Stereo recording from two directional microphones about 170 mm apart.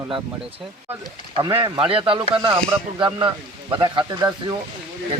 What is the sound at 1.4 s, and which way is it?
Speech, 25° right (ahead or behind).